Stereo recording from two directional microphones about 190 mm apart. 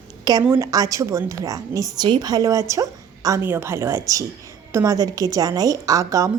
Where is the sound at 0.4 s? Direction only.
15° right (ahead or behind).